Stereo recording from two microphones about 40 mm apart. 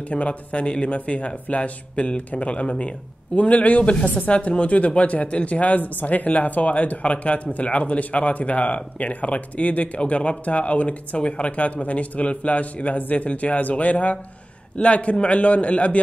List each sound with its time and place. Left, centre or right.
0.1 s speech: left